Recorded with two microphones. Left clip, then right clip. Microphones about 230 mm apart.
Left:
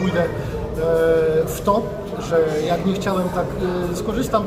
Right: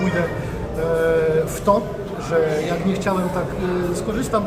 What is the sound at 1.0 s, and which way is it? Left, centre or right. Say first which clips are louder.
A man's voice: left 1 dB; centre.